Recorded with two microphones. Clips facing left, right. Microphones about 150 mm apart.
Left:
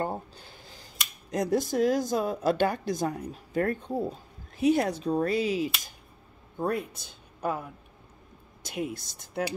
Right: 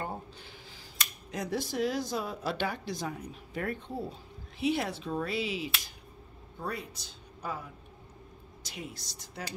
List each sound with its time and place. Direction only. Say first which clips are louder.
0.0 s a sound: left 6 dB; 40° left (ahead or behind)
1.3 s speech: left 7 dB; 45° left (ahead or behind)
8.6 s speech: left 10 dB; 55° left (ahead or behind)